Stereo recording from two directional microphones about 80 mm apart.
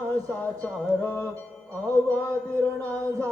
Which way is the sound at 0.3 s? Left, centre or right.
Centre.